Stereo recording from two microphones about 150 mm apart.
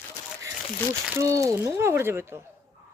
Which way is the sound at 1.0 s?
20° right (ahead or behind).